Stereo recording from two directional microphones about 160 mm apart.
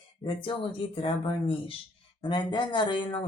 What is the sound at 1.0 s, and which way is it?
Speech, 35° left (ahead or behind).